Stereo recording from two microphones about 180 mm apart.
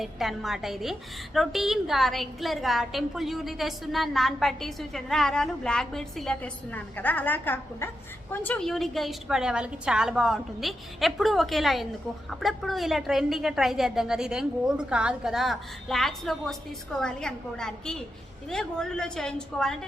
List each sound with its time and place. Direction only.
0.0 s a woman's voice: centre (ahead or behind)